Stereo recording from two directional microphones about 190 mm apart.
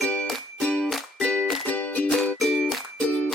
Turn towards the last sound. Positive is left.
turn(degrees=0)  # may be behind; listen again after turning